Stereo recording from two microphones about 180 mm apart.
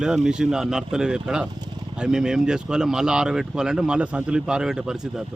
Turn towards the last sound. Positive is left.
turn(degrees=-5)  # may be behind; listen again after turning